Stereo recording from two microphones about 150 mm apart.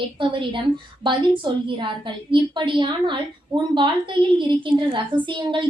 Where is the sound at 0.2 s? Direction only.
35° right (ahead or behind).